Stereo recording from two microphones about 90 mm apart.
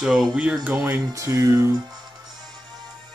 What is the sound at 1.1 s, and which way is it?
Speech, 35° right (ahead or behind).